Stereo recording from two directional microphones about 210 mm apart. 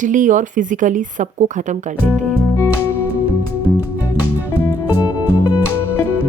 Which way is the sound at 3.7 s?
5° right (ahead or behind).